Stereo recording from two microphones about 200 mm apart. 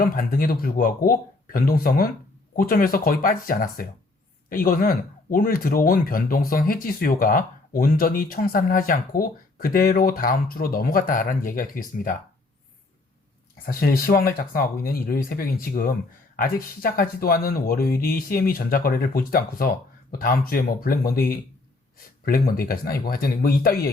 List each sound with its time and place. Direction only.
0.0 s speech: 45° left (ahead or behind)
13.7 s speech: 50° left (ahead or behind)